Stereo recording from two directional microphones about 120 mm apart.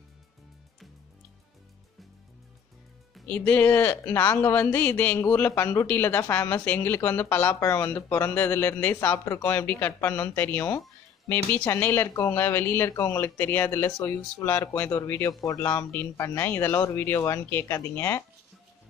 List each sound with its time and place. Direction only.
3.3 s speech: 15° left (ahead or behind)